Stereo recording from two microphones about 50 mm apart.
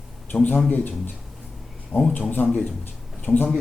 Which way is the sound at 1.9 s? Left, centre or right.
Left.